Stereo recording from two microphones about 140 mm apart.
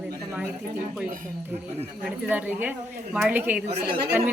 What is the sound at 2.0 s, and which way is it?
A woman's voice, 10° right (ahead or behind).